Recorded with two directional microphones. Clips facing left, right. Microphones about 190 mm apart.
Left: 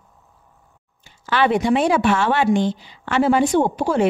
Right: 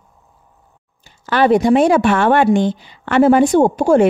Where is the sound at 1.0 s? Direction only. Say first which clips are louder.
Right 5 dB; 45° right (ahead or behind).